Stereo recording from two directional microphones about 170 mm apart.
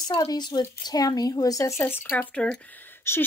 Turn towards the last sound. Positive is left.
turn(degrees=15)  # may be behind; listen again after turning